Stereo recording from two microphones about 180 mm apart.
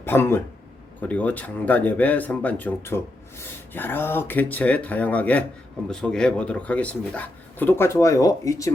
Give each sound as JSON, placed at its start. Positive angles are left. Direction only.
{"t": 0.0, "sound": "speech", "side_deg": 15}